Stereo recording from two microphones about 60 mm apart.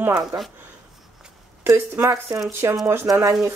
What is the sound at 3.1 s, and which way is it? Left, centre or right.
Speech, right.